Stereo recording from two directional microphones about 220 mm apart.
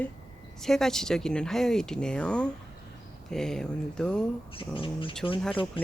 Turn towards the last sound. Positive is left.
turn(degrees=25)  # may be behind; listen again after turning